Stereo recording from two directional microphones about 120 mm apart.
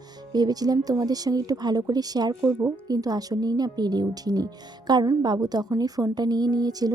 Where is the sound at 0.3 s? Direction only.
35° right (ahead or behind).